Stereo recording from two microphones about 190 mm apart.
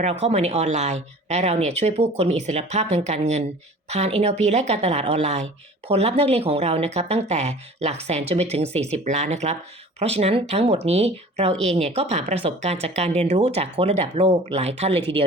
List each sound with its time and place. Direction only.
0.0 s speech: 35° right (ahead or behind)